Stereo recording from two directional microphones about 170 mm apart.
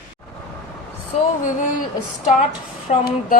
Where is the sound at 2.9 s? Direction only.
45° left (ahead or behind).